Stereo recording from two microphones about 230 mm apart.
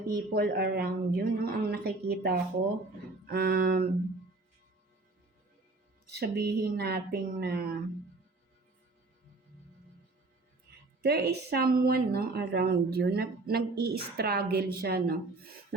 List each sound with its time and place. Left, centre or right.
0.1 s a woman's voice: right
3.2 s a sound: right
6.1 s a woman's voice: right
11.0 s a woman's voice: right